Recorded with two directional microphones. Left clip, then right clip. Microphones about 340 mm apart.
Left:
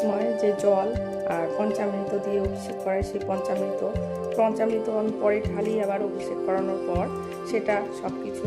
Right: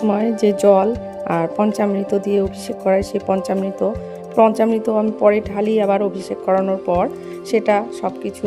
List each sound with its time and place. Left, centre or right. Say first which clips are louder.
0.1 s speech: right 6 dB; right
4.4 s speech: right 9 dB; right